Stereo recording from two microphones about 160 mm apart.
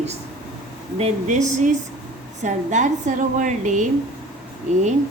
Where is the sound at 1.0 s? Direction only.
50° right (ahead or behind).